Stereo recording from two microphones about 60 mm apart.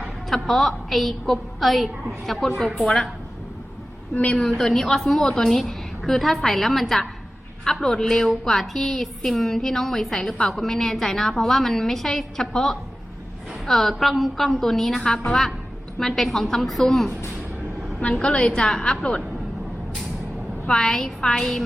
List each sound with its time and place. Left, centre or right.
0.3 s a woman's voice: centre
4.1 s a woman's voice: left
4.4 s a woman's voice: centre
20.7 s a woman's voice: centre